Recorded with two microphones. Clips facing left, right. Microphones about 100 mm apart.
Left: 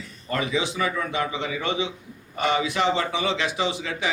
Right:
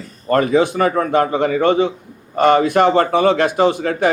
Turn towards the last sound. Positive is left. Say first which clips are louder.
# right 11 dB
turn(degrees=-50)  # may be behind; listen again after turning